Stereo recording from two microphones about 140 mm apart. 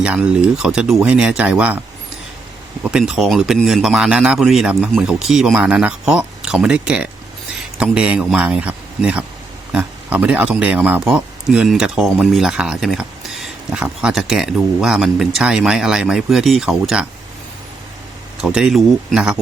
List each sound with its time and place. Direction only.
0.0 s speech: 10° right (ahead or behind)
3.0 s speech: centre (ahead or behind)
18.4 s speech: 5° right (ahead or behind)